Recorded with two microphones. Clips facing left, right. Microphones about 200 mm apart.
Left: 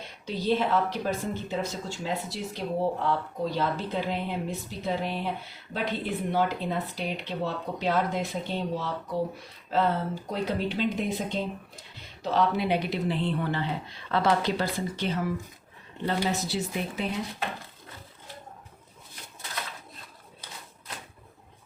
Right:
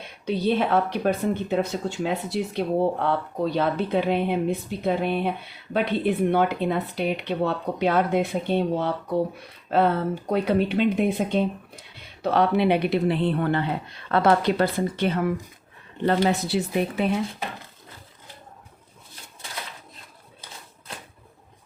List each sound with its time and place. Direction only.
0.3 s speech: 60° right (ahead or behind)
6.3 s speech: 60° right (ahead or behind)